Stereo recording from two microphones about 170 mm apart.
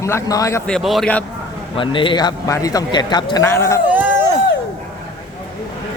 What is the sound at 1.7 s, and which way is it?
A man's voice, 30° left (ahead or behind).